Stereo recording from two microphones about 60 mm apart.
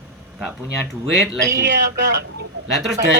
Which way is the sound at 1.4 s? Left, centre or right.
Right.